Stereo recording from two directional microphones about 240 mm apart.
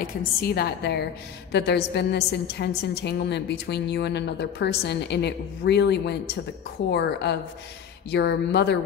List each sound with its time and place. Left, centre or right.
0.0 s a woman's voice: left